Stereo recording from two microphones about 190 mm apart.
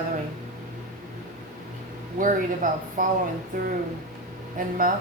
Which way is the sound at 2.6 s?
45° right (ahead or behind).